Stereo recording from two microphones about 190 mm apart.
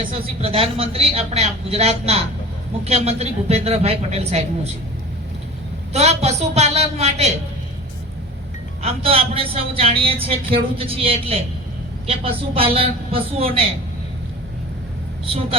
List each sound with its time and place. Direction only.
0.1 s speech: 30° right (ahead or behind)
5.9 s speech: 35° right (ahead or behind)
8.8 s speech: 30° right (ahead or behind)
15.3 s speech: 30° right (ahead or behind)